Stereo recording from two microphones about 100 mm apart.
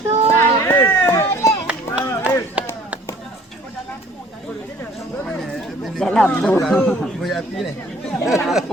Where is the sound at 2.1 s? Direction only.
30° left (ahead or behind).